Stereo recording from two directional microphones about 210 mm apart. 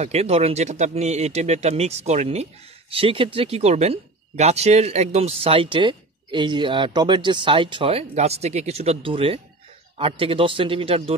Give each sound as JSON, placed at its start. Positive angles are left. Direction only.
{"t": 0.0, "sound": "speech", "side_deg": -30}